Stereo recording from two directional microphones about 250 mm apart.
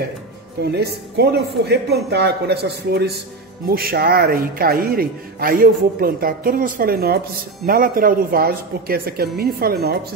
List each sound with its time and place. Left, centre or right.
0.7 s a man's voice: right